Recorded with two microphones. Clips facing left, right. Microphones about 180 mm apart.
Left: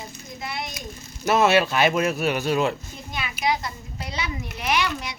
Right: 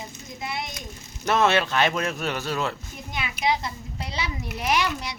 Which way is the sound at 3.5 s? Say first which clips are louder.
Even; 25° right (ahead or behind).